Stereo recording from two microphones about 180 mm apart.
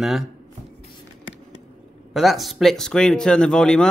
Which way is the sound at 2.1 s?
Centre (ahead or behind).